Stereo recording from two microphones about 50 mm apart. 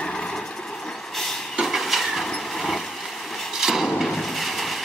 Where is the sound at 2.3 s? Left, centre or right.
Centre.